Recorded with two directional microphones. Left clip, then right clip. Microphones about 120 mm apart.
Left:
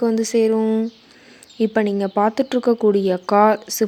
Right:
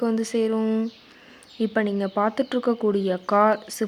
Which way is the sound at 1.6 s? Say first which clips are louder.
Left 5 dB; 30° left (ahead or behind).